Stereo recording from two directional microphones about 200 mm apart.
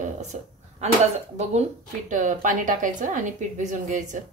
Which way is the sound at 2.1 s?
40° right (ahead or behind).